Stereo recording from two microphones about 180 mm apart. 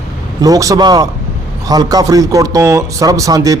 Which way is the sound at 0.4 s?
20° right (ahead or behind).